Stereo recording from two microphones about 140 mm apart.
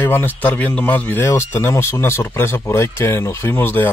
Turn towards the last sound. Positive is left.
turn(degrees=15)  # may be behind; listen again after turning